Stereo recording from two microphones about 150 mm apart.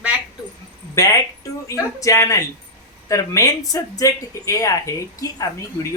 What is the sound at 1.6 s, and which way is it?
A woman's voice, 20° left (ahead or behind).